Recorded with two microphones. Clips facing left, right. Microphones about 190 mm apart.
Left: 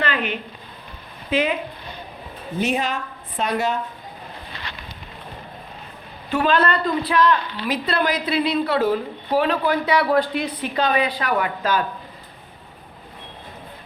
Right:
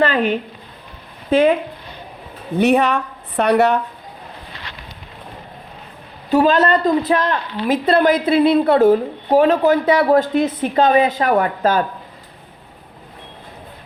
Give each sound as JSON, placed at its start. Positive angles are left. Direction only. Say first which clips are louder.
{"t": 0.0, "sound": "a sound", "louder": "right 8 dB", "side_deg": -40}
{"t": 1.3, "sound": "a woman's voice", "louder": "right 8 dB", "side_deg": -50}
{"t": 2.6, "sound": "a woman's voice", "louder": "right 8 dB", "side_deg": -65}
{"t": 6.3, "sound": "a woman's voice", "louder": "right 6 dB", "side_deg": -40}